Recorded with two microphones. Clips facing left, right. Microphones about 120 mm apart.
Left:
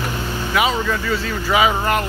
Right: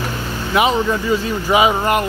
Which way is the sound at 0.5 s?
20° right (ahead or behind).